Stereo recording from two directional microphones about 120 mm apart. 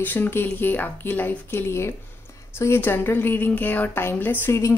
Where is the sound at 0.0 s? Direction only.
15° left (ahead or behind).